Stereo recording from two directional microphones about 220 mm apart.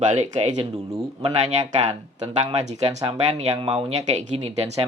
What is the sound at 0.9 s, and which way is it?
Speech, 15° right (ahead or behind).